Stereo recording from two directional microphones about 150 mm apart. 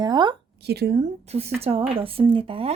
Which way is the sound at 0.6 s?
90° right.